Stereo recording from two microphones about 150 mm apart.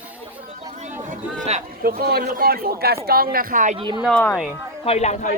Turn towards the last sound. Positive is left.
turn(degrees=50)  # may be behind; listen again after turning